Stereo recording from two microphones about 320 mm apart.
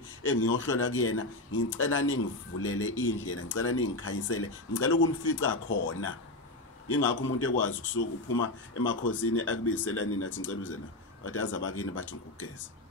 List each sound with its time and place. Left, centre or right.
0.2 s speech: left